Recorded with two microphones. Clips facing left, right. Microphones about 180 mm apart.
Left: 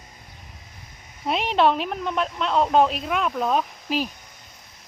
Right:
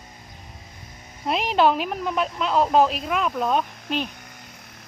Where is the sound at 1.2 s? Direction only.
Centre (ahead or behind).